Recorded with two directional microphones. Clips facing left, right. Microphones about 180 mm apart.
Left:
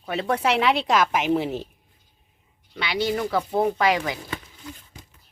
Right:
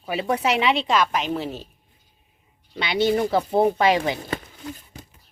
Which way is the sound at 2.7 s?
25° right (ahead or behind).